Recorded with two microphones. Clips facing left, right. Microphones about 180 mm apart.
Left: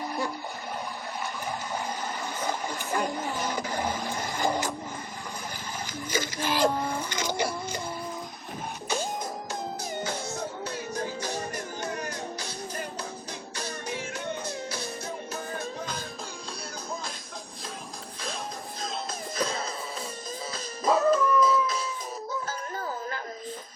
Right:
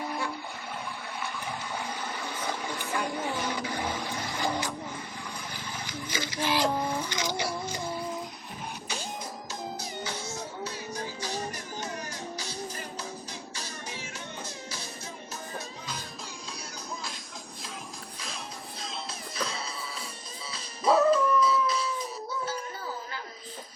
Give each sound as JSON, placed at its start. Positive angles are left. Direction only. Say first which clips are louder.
{"t": 0.0, "sound": "music", "louder": "left 2 dB", "side_deg": 40}
{"t": 1.2, "sound": "water", "louder": "left 2 dB", "side_deg": 40}
{"t": 5.8, "sound": "a sound", "louder": "left 5 dB", "side_deg": 45}
{"t": 9.5, "sound": "music", "louder": "left 3 dB", "side_deg": 50}
{"t": 13.6, "sound": "music", "louder": "left 9 dB", "side_deg": 55}
{"t": 19.4, "sound": "wheeze", "louder": "left 5 dB", "side_deg": 45}
{"t": 20.5, "sound": "howl", "louder": "right 1 dB", "side_deg": 45}